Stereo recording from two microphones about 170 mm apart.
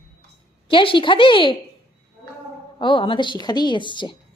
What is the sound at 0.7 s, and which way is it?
Speech, 30° left (ahead or behind).